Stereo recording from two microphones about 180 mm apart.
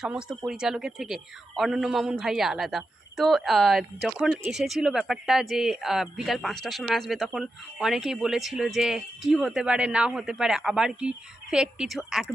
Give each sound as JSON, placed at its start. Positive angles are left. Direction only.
{"t": 0.0, "sound": "speech", "side_deg": -5}